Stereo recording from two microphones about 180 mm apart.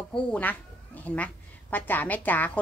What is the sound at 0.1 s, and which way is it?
A woman's voice, 10° left (ahead or behind).